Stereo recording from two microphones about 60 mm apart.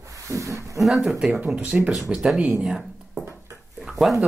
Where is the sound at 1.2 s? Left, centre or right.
Right.